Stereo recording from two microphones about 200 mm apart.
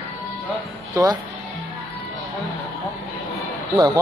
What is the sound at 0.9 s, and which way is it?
Speech, 15° right (ahead or behind).